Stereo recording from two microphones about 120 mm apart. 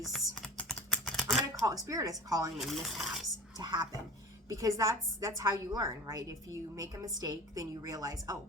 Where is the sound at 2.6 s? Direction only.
Centre (ahead or behind).